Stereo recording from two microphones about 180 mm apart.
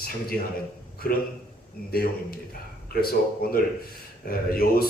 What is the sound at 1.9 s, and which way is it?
Speech, 55° left (ahead or behind).